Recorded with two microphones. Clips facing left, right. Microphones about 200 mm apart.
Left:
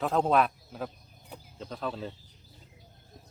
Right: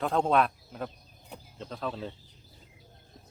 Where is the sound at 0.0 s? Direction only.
Centre (ahead or behind).